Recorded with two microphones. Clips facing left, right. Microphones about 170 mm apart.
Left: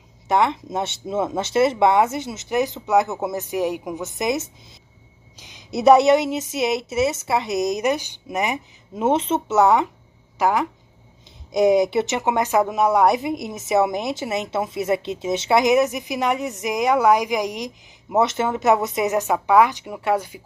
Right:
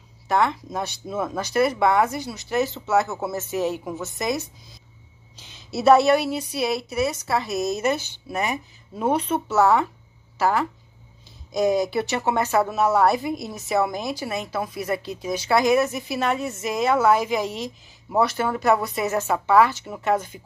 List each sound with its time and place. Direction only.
0.3 s a woman's voice: 20° left (ahead or behind)